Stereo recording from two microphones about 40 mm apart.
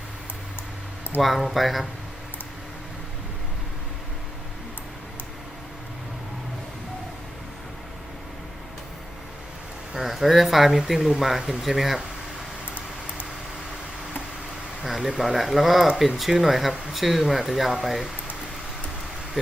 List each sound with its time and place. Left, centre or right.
1.2 s speech: centre
9.9 s speech: centre
14.8 s speech: centre